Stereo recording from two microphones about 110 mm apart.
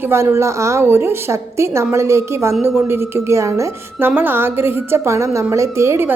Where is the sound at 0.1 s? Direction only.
25° right (ahead or behind).